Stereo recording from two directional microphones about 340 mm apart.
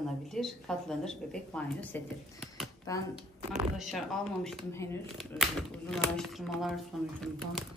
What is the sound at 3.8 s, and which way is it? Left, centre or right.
A woman's voice, centre.